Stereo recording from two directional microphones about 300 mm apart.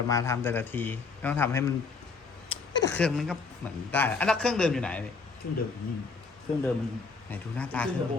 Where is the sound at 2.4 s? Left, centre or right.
Left.